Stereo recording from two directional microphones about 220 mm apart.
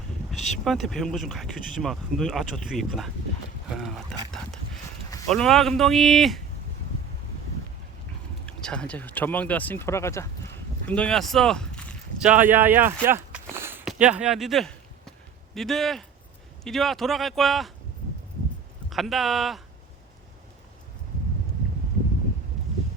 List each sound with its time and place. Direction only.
0.3 s speech: centre (ahead or behind)
8.4 s speech: 5° left (ahead or behind)
12.3 s speech: 10° right (ahead or behind)
18.9 s speech: centre (ahead or behind)